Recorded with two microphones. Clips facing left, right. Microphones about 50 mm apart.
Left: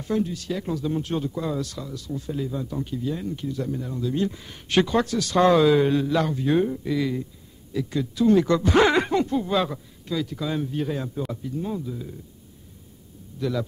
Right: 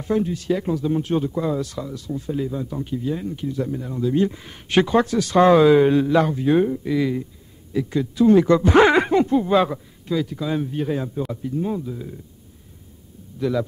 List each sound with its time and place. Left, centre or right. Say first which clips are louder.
0.0 s speech: right 3 dB; right
13.4 s speech: right 4 dB; centre